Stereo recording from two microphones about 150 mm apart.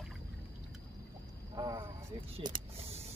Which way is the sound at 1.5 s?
30° right (ahead or behind).